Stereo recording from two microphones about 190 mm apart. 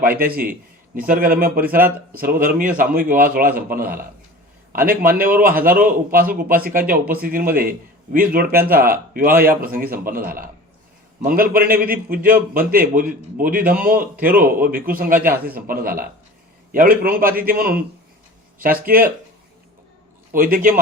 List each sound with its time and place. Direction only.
0.0 s a man's voice: 50° right (ahead or behind)
20.3 s a man's voice: 45° right (ahead or behind)